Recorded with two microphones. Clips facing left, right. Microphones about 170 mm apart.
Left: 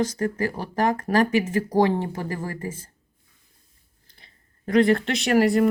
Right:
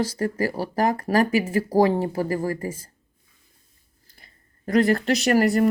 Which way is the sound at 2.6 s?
10° right (ahead or behind).